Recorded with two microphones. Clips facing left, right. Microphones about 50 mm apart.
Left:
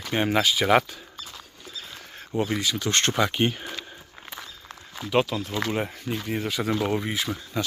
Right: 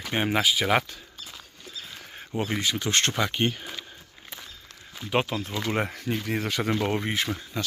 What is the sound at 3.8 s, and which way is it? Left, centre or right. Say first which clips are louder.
Walk: left 2 dB; left.